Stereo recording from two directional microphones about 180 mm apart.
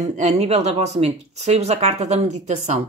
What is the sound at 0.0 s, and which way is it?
A woman's voice, 40° right (ahead or behind).